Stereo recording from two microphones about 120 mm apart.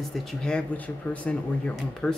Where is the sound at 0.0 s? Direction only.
Centre (ahead or behind).